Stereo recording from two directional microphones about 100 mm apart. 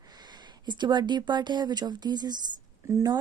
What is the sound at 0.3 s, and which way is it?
A woman's voice, 50° right (ahead or behind).